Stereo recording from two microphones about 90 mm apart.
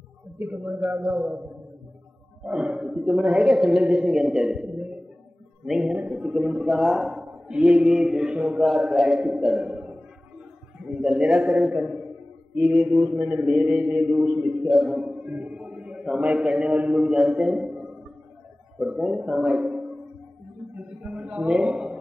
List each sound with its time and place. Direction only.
0.4 s a man's voice: 20° right (ahead or behind)
2.4 s a man's voice: 10° right (ahead or behind)
12.5 s mantra: 5° right (ahead or behind)
13.1 s a man's voice: 20° right (ahead or behind)
15.5 s a sound: 5° right (ahead or behind)
16.2 s a man's voice: 15° right (ahead or behind)
18.8 s a man's voice: 5° right (ahead or behind)
21.0 s a woman's voice: 10° right (ahead or behind)